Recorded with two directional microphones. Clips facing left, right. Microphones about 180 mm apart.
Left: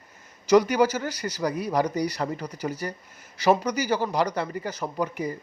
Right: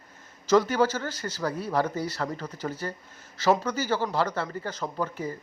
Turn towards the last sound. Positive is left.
turn(degrees=15)  # may be behind; listen again after turning